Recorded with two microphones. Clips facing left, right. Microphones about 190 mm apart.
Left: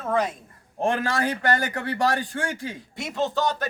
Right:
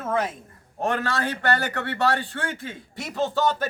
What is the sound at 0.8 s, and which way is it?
Speech, 30° left (ahead or behind).